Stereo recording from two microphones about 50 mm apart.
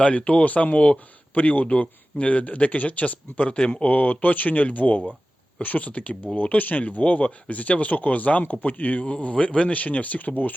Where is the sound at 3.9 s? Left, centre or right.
Left.